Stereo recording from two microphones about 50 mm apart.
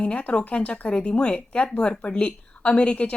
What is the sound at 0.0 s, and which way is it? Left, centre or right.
Speech, left.